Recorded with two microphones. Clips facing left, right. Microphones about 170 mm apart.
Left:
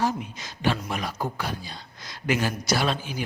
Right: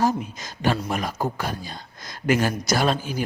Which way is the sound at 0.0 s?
40° right (ahead or behind).